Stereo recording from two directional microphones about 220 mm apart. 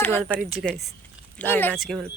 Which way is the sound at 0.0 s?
5° left (ahead or behind).